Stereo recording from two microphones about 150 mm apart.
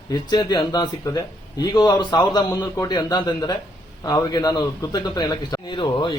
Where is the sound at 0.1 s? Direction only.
30° left (ahead or behind).